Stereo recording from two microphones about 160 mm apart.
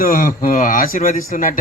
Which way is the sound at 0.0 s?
60° left (ahead or behind).